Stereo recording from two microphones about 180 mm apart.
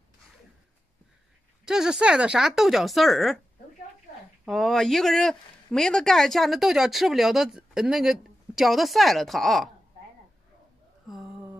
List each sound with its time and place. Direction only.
1.7 s speech: 5° right (ahead or behind)
4.5 s speech: centre (ahead or behind)
11.1 s a sound: centre (ahead or behind)